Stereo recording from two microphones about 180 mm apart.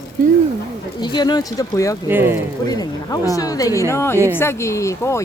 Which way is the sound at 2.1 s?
10° right (ahead or behind).